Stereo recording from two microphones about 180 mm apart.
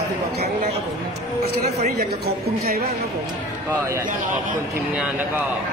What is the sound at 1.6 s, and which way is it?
Speech, 40° right (ahead or behind).